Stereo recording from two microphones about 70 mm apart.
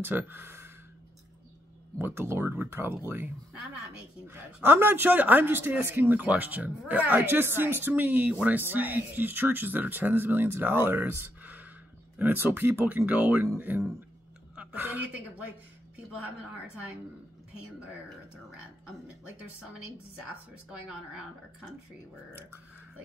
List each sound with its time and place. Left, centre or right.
0.0 s speech: right
2.0 s speech: right
4.6 s speech: right
14.5 s a woman's voice: centre